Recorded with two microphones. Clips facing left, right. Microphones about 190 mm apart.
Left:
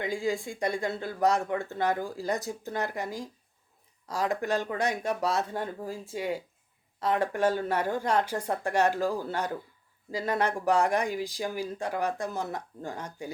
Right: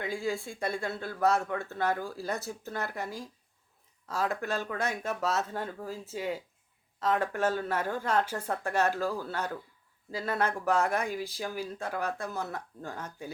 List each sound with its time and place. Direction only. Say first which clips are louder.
0.0 s speech: left 3 dB; 15° left (ahead or behind)